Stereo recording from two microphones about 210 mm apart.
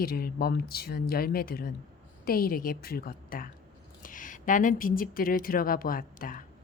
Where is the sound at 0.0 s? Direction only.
45° left (ahead or behind).